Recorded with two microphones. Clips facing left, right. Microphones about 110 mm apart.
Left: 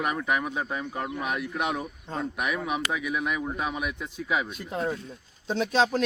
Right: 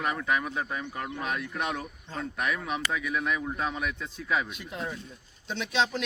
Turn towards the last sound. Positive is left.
turn(degrees=40)  # may be behind; listen again after turning